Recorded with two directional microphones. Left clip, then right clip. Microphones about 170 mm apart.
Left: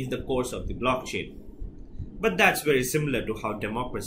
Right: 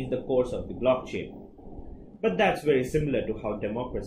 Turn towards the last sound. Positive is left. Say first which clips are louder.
# even
turn(degrees=15)  # may be behind; listen again after turning